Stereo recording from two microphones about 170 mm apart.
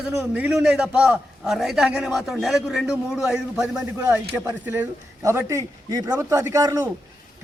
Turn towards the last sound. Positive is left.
turn(degrees=-20)  # may be behind; listen again after turning